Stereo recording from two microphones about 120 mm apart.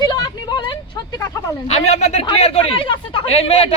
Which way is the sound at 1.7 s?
65° left (ahead or behind).